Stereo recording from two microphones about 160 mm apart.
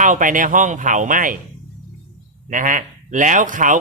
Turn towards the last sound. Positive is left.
turn(degrees=-55)  # may be behind; listen again after turning